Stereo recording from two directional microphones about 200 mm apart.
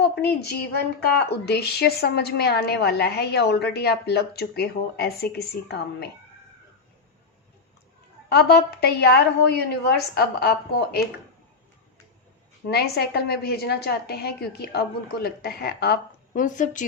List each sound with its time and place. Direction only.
0.0 s a woman's voice: 55° left (ahead or behind)
8.3 s a woman's voice: 55° left (ahead or behind)
12.6 s a woman's voice: 55° left (ahead or behind)